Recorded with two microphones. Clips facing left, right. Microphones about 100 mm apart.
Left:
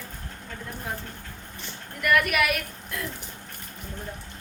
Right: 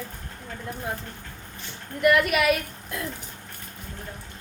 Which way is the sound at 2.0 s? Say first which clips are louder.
Right 3 dB; 25° right (ahead or behind).